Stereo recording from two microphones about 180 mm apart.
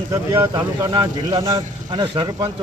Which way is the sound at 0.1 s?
20° right (ahead or behind).